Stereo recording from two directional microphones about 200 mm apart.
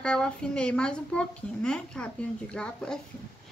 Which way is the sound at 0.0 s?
5° left (ahead or behind).